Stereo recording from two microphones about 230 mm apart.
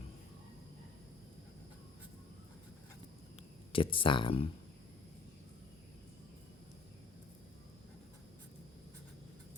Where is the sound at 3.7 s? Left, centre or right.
Left.